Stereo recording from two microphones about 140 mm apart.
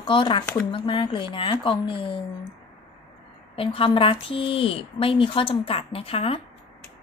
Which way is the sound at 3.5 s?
40° left (ahead or behind).